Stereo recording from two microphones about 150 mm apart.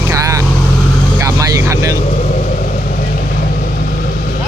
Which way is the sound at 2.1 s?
55° left (ahead or behind).